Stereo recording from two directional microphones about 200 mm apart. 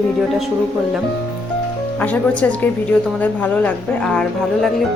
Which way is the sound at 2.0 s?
5° left (ahead or behind).